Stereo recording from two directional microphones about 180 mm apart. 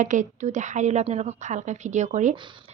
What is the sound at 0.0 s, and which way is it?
Speech, 45° right (ahead or behind).